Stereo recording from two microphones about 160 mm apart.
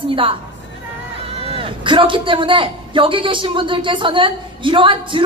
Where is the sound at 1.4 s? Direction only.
35° right (ahead or behind).